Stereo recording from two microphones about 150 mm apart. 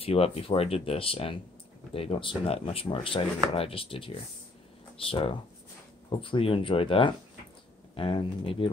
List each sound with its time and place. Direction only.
0.0 s speech: 40° left (ahead or behind)